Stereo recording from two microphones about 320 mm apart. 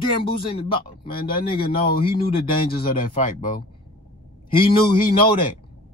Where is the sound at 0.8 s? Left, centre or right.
Left.